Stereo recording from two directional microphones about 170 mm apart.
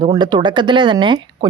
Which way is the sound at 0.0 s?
25° right (ahead or behind).